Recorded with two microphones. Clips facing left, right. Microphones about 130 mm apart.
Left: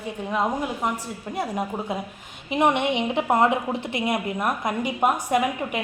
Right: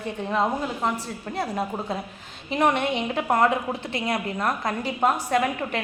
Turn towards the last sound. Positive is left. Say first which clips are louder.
# left 1 dB
turn(degrees=15)  # may be behind; listen again after turning